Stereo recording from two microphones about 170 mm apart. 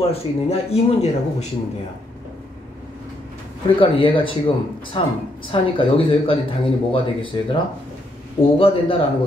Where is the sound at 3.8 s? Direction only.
30° left (ahead or behind).